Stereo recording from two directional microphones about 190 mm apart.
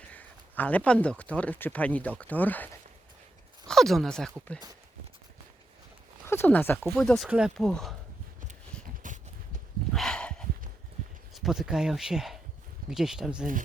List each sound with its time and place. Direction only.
0.1 s speech: 10° left (ahead or behind)
3.7 s speech: centre (ahead or behind)
6.2 s speech: 10° left (ahead or behind)
9.0 s horse: 45° right (ahead or behind)
9.9 s a sound: 5° left (ahead or behind)
11.3 s speech: centre (ahead or behind)